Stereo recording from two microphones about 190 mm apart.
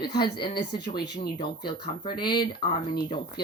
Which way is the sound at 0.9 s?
20° left (ahead or behind).